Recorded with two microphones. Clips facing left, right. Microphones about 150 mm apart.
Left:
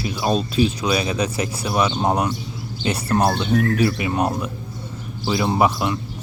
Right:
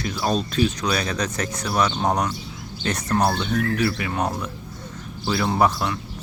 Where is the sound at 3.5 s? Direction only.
25° left (ahead or behind).